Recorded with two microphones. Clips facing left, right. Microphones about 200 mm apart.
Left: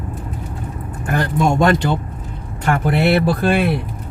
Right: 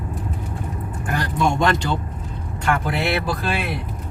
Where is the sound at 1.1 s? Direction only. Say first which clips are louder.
Left 4 dB; 50° left (ahead or behind).